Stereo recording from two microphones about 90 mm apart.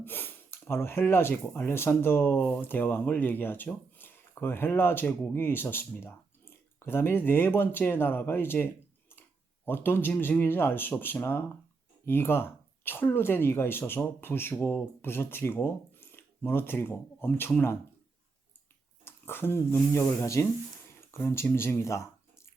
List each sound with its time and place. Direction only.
0.0 s speech: 25° left (ahead or behind)
19.0 s speech: 25° left (ahead or behind)